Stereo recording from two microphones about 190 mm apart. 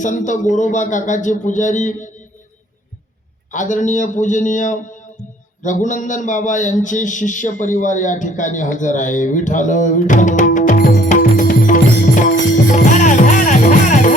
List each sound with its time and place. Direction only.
0.0 s a man's voice: 40° left (ahead or behind)
3.5 s a man's voice: 40° left (ahead or behind)
11.1 s music: 50° left (ahead or behind)